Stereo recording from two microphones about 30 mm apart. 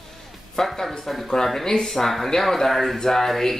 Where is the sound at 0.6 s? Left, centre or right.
Centre.